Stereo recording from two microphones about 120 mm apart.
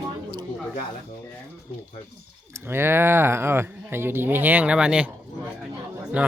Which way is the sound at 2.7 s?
20° right (ahead or behind).